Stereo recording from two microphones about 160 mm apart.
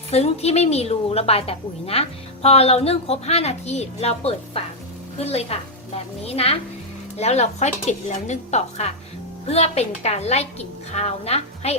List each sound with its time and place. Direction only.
0.1 s a woman's voice: 40° left (ahead or behind)